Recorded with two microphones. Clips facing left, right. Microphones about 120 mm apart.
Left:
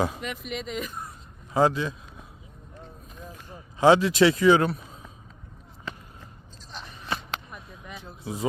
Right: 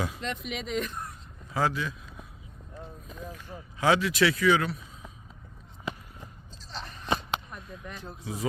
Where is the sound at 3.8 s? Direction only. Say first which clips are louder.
Left 6 dB; 30° left (ahead or behind).